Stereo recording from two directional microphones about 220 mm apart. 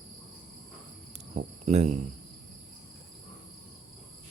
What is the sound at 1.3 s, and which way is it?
Cricket, 30° right (ahead or behind).